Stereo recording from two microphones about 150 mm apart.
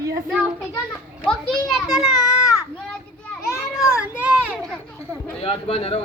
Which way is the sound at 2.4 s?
20° left (ahead or behind).